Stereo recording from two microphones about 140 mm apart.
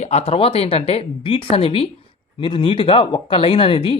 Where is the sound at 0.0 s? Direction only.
50° left (ahead or behind).